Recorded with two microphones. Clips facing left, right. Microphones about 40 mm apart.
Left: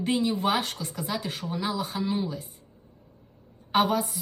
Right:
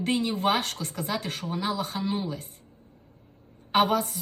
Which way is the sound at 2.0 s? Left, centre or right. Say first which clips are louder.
Left 1 dB; right.